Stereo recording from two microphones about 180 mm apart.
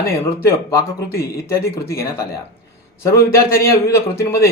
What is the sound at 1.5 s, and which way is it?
Speech, 15° left (ahead or behind).